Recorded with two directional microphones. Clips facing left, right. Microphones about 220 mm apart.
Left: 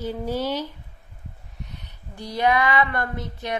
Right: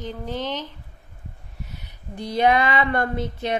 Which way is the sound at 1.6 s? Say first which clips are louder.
Right 1 dB; 5° right (ahead or behind).